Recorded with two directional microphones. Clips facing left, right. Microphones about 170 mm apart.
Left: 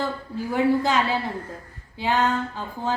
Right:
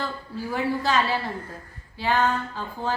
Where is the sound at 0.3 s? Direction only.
20° left (ahead or behind).